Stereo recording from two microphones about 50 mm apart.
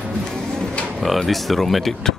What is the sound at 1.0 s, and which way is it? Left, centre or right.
Speech, centre.